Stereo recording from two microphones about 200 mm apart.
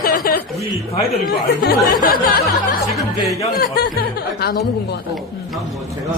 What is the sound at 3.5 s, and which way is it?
Speech, 50° left (ahead or behind).